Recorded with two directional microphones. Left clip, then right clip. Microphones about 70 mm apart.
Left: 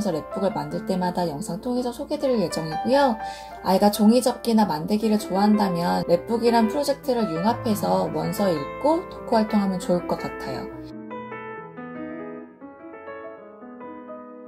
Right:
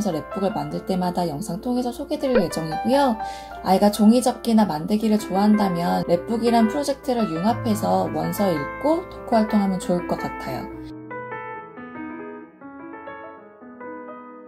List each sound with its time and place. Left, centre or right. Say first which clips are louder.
0.0 s speech: even; left
3.6 s speech: right 1 dB; left